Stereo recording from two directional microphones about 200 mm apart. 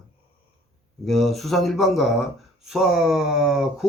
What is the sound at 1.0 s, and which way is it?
Speech, centre (ahead or behind).